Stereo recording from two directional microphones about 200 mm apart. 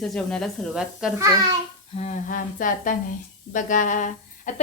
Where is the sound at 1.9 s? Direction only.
35° left (ahead or behind).